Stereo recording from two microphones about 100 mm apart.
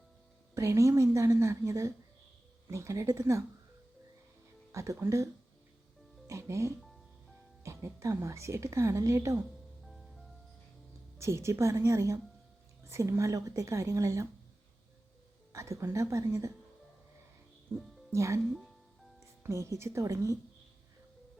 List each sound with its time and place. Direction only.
0.5 s speech: 30° right (ahead or behind)
4.7 s speech: 30° right (ahead or behind)
9.8 s music: centre (ahead or behind)
11.2 s speech: 30° right (ahead or behind)
15.5 s speech: 30° right (ahead or behind)
17.7 s speech: 25° right (ahead or behind)